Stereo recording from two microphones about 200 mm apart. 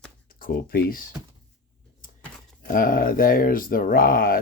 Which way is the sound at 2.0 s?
40° left (ahead or behind).